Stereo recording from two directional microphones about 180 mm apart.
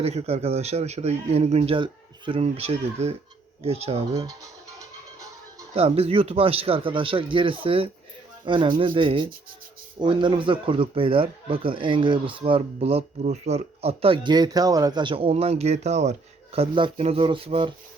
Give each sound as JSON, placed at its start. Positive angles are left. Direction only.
{"t": 0.0, "sound": "speech", "side_deg": -35}
{"t": 4.1, "sound": "speech", "side_deg": -20}
{"t": 5.7, "sound": "speech", "side_deg": -35}